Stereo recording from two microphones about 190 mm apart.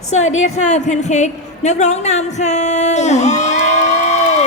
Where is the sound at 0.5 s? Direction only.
40° left (ahead or behind).